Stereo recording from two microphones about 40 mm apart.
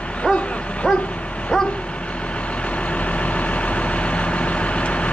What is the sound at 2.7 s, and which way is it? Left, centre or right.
Vehicle, left.